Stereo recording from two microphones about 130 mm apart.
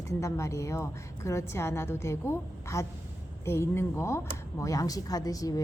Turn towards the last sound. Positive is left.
turn(degrees=25)  # may be behind; listen again after turning